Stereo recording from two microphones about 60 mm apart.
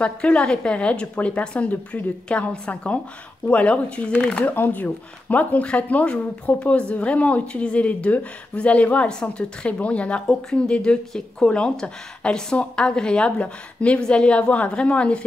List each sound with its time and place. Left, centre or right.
0.0 s speech: centre
4.6 s speech: left